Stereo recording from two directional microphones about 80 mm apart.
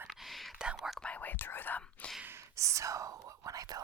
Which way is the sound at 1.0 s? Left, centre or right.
Centre.